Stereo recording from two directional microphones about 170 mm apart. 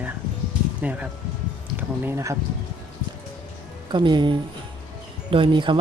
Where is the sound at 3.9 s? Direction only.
25° right (ahead or behind).